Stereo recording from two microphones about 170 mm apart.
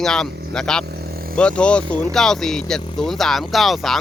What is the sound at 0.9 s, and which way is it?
Vehicle, 65° right (ahead or behind).